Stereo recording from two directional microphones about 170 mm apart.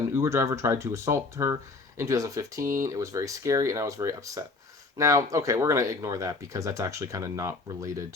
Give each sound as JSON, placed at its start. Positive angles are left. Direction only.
{"t": 0.2, "sound": "speech", "side_deg": -15}